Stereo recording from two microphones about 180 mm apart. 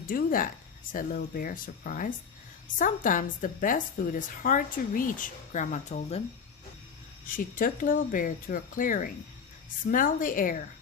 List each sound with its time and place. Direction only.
0.1 s a woman's voice: 50° left (ahead or behind)
7.3 s a woman's voice: 50° left (ahead or behind)